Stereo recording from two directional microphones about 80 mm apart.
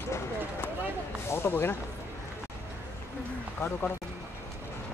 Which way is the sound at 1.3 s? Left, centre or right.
Left.